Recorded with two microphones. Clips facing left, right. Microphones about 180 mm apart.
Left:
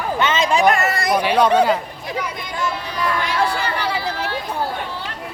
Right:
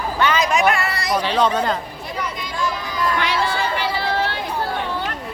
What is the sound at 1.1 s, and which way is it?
Speech, 10° left (ahead or behind).